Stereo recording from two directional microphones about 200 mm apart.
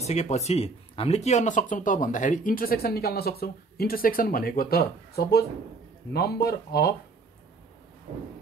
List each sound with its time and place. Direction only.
0.0 s speech: 35° left (ahead or behind); by 6.9 s 50° left (ahead or behind)